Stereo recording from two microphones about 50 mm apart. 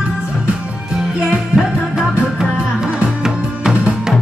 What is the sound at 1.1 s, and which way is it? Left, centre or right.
Music, right.